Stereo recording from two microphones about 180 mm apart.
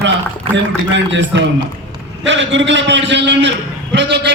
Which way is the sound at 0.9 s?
80° right.